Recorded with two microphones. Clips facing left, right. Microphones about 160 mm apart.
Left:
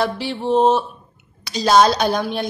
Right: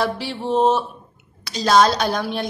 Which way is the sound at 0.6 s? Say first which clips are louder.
Left 2 dB; 30° left (ahead or behind).